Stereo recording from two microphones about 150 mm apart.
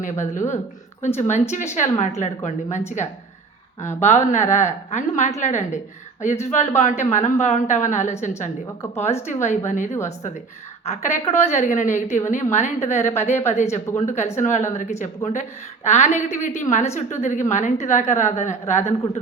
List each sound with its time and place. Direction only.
0.0 s a woman's voice: 55° left (ahead or behind)
9.2 s a woman's voice: 50° left (ahead or behind)